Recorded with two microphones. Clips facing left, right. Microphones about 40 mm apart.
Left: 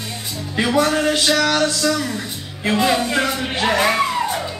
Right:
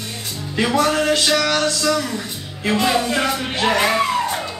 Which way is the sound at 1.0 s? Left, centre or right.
Centre.